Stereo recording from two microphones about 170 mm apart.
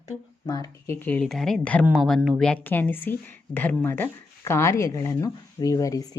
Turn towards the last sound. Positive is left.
turn(degrees=20)  # may be behind; listen again after turning